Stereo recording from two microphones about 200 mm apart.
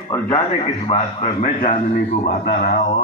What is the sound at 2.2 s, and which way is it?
Speech, 50° left (ahead or behind).